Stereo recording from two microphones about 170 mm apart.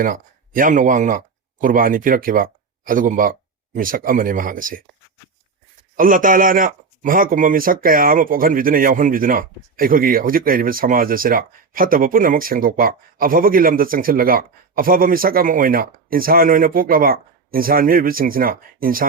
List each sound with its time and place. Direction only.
0.0 s speech: 55° right (ahead or behind)
6.0 s speech: 55° right (ahead or behind)